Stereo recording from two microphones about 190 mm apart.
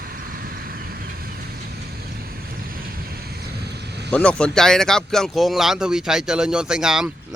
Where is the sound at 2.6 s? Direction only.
55° right (ahead or behind).